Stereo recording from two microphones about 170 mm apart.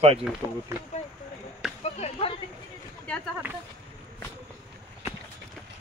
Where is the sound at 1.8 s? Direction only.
35° left (ahead or behind).